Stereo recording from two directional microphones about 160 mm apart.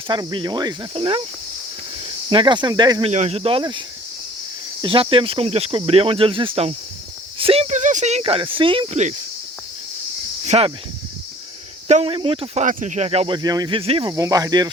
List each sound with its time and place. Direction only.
0.1 s speech: 30° right (ahead or behind)
2.0 s cricket: 30° right (ahead or behind)
3.1 s speech: 45° right (ahead or behind)
10.4 s speech: 40° right (ahead or behind)
11.9 s speech: 40° right (ahead or behind)
12.6 s speech: 50° right (ahead or behind)
14.1 s speech: 20° right (ahead or behind)